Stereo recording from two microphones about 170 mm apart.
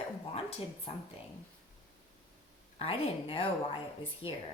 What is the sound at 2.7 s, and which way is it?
A woman's voice, 35° left (ahead or behind).